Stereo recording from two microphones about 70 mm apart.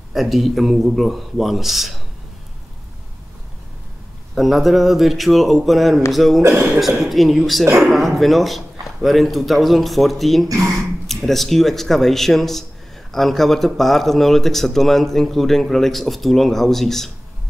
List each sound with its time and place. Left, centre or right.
0.1 s speech: centre
4.4 s speech: centre
6.4 s speech: right
7.0 s speech: centre
7.6 s speech: right
7.9 s speech: centre